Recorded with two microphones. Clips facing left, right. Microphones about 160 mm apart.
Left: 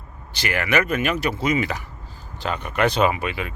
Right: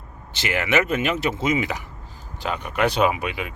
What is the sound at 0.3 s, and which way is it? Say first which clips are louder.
Speech: even; 20° right (ahead or behind).